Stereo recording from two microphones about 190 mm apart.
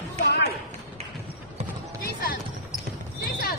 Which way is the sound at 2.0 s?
50° left (ahead or behind).